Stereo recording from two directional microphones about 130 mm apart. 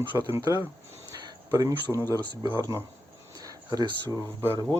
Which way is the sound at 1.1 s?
25° right (ahead or behind).